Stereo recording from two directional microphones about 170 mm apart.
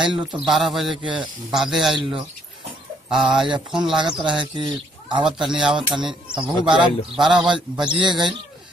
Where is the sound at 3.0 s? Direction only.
5° right (ahead or behind).